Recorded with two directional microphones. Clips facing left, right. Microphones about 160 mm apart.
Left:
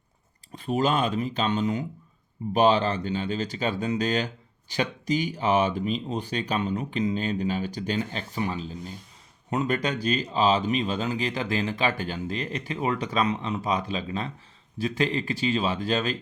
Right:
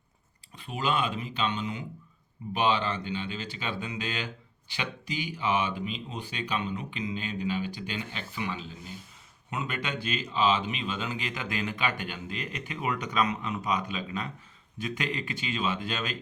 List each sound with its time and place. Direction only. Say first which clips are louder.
0.5 s speech: left 6 dB; 40° left (ahead or behind)